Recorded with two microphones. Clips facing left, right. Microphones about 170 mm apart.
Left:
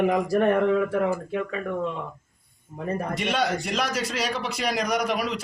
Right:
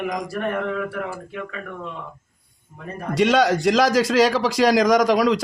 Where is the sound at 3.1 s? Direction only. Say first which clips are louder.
Right 11 dB; 90° right.